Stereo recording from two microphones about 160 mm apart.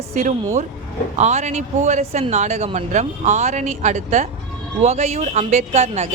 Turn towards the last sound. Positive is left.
turn(degrees=-40)  # may be behind; listen again after turning